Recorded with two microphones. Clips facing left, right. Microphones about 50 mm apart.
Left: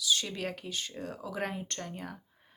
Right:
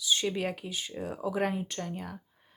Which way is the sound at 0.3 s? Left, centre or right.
Centre.